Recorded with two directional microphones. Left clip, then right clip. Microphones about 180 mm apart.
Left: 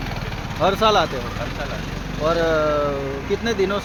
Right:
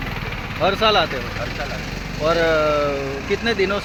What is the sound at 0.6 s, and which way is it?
Speech, 10° left (ahead or behind).